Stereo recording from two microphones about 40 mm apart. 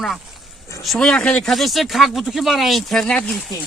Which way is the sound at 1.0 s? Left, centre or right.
Centre.